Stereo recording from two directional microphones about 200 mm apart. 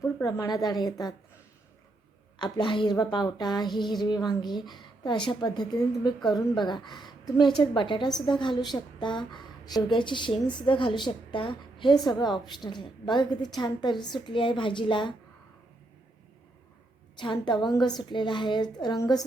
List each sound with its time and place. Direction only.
0.2 s a woman's voice: 20° left (ahead or behind)
2.4 s a woman's voice: 25° left (ahead or behind)
17.2 s a woman's voice: 20° left (ahead or behind)